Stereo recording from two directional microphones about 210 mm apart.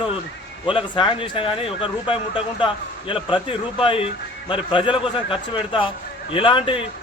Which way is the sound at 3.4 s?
25° left (ahead or behind).